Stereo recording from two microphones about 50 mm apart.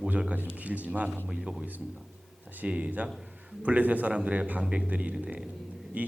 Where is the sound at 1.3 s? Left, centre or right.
Centre.